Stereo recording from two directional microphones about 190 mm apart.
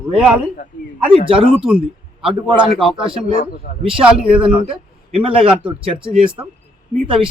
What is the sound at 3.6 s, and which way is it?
Speech, 40° left (ahead or behind).